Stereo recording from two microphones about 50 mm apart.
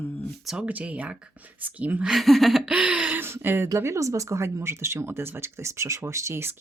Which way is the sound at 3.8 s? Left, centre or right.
Right.